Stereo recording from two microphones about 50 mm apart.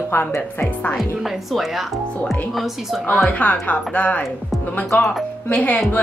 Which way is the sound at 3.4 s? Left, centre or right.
Left.